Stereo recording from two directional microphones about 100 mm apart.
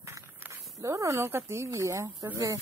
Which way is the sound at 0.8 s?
30° right (ahead or behind).